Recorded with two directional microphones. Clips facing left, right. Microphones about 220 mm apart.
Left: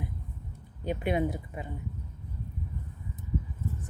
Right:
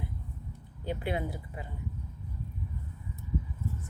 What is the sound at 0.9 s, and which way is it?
Speech, 20° left (ahead or behind).